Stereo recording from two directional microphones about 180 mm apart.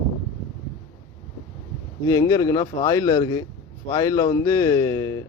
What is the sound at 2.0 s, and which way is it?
A man's voice, 20° left (ahead or behind).